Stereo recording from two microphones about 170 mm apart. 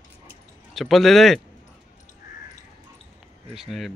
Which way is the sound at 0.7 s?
Centre (ahead or behind).